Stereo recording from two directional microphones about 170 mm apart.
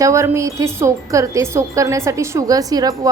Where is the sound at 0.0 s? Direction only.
15° right (ahead or behind).